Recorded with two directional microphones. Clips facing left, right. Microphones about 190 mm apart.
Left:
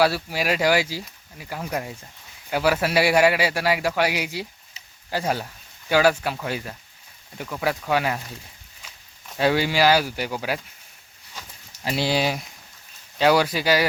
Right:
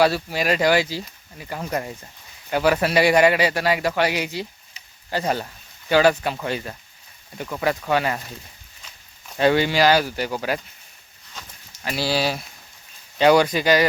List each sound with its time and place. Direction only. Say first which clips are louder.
0.0 s a man's voice: right 2 dB; 5° left (ahead or behind)
9.3 s a man's voice: right 3 dB; 5° left (ahead or behind)
11.9 s speech: even; 20° left (ahead or behind)
13.1 s speech: right 3 dB; 5° left (ahead or behind)